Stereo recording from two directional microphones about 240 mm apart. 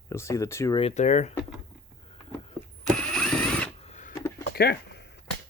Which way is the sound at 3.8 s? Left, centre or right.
Left.